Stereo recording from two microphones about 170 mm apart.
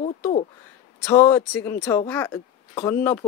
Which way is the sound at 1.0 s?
15° left (ahead or behind).